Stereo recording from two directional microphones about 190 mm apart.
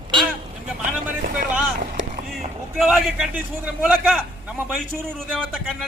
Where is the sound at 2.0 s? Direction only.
75° right (ahead or behind).